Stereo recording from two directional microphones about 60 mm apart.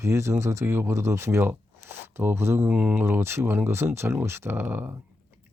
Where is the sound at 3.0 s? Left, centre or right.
Right.